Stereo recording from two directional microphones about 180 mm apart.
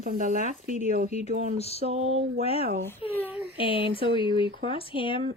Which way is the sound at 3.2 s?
10° right (ahead or behind).